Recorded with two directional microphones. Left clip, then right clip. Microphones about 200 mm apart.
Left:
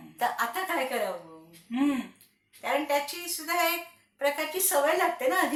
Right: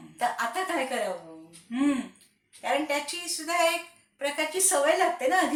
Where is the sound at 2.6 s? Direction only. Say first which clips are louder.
Even; 15° left (ahead or behind).